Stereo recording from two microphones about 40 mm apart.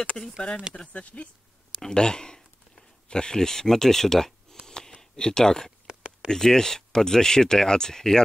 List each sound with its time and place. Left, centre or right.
0.7 s speech: left
1.8 s speech: centre
4.6 s a sound: centre
6.2 s speech: centre